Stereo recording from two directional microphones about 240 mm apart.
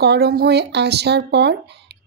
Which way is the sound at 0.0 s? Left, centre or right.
Right.